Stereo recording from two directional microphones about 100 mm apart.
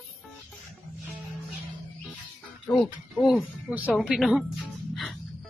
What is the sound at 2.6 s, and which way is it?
Speech, 5° left (ahead or behind).